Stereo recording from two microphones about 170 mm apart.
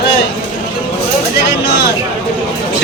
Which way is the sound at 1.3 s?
90° left.